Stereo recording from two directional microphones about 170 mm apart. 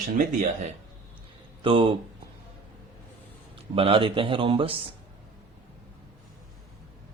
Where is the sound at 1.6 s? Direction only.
30° right (ahead or behind).